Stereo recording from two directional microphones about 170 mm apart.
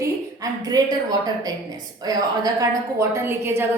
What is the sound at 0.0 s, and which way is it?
A woman's voice, 20° right (ahead or behind).